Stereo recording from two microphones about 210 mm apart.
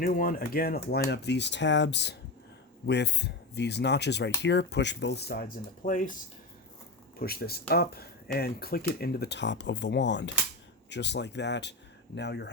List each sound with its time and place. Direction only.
0.0 s speech: 45° left (ahead or behind)
7.2 s speech: 45° left (ahead or behind)